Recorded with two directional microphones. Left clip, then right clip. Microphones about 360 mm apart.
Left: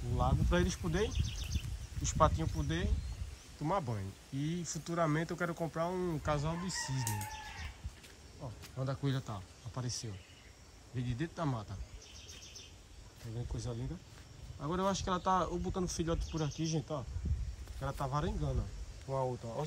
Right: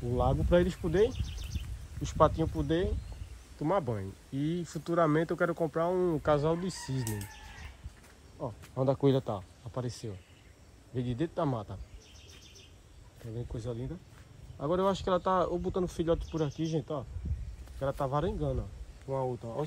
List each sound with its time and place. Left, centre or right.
0.0 s speech: centre
8.4 s speech: right
9.0 s speech: centre
13.2 s speech: centre